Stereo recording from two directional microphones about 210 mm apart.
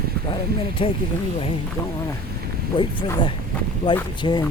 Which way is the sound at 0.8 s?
25° left (ahead or behind).